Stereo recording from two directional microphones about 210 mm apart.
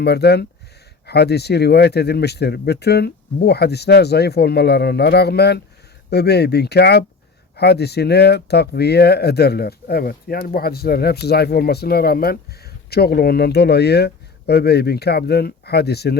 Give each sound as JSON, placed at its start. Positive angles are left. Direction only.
{"t": 0.0, "sound": "speech", "side_deg": 50}